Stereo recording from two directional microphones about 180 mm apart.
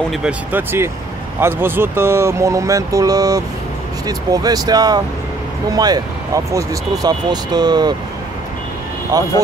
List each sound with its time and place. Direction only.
0.1 s speech: 5° right (ahead or behind); by 7.9 s 25° right (ahead or behind)
9.1 s speech: 20° right (ahead or behind)